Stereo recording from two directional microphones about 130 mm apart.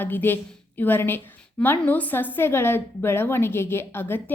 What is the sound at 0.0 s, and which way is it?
A woman's voice, 15° left (ahead or behind).